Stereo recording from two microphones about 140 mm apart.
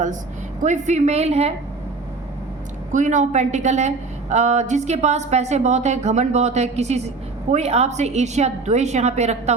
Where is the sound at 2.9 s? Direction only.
60° right (ahead or behind).